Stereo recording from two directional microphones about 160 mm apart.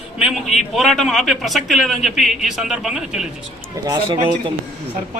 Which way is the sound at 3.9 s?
30° right (ahead or behind).